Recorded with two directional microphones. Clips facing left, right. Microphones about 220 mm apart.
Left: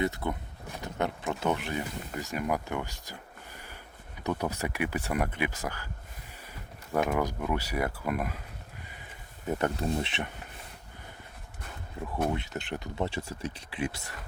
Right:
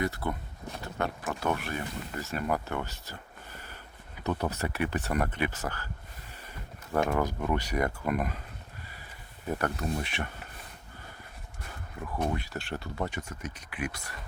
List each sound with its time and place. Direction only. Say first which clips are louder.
0.0 s speech: left 1 dB; 20° left (ahead or behind)
6.9 s speech: even; 10° left (ahead or behind)
9.5 s speech: left 2 dB; 20° left (ahead or behind)
12.3 s speech: left 1 dB; 20° left (ahead or behind)
13.1 s speech: left 3 dB; 30° left (ahead or behind)